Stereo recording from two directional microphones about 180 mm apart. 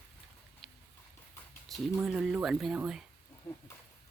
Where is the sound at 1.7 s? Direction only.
Centre (ahead or behind).